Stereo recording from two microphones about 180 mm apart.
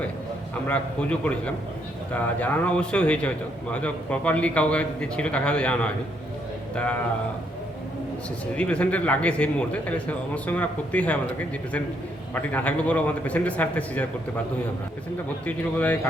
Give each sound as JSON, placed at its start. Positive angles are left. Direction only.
{"t": 0.7, "sound": "a man's voice", "side_deg": 5}
{"t": 8.5, "sound": "a man's voice", "side_deg": 5}
{"t": 12.3, "sound": "a man's voice", "side_deg": 10}
{"t": 15.4, "sound": "a man's voice", "side_deg": 10}